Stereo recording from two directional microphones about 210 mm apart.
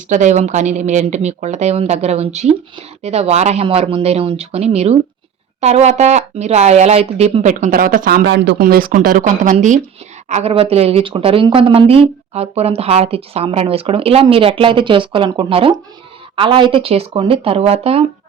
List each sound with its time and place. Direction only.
0.1 s speech: 35° right (ahead or behind)